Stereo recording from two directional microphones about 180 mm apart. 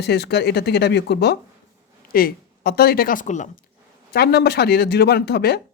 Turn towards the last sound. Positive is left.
turn(degrees=65)  # may be behind; listen again after turning